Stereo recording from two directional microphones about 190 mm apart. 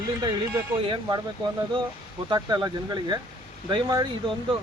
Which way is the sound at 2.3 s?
20° right (ahead or behind).